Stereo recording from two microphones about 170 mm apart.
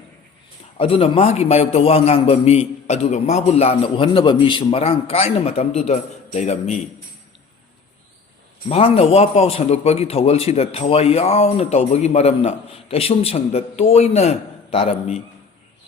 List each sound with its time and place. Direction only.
0.8 s a man's voice: 35° left (ahead or behind)
8.7 s a man's voice: 35° left (ahead or behind)